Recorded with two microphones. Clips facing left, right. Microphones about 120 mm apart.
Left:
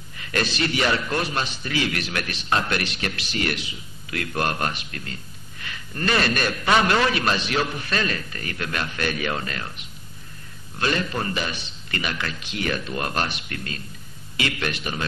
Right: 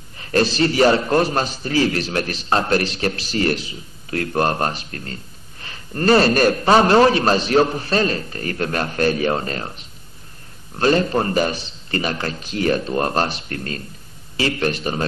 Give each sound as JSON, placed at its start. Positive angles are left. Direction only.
{"t": 0.2, "sound": "a man's voice", "side_deg": -35}